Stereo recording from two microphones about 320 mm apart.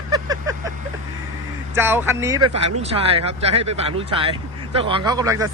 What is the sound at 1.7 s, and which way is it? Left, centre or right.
Speech, centre.